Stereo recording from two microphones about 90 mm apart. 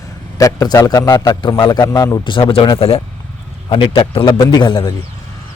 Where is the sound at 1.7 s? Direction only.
45° left (ahead or behind).